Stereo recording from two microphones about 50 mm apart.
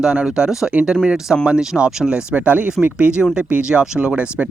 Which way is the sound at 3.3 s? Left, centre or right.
Centre.